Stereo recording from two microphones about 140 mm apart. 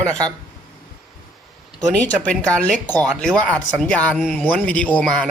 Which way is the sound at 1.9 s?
10° left (ahead or behind).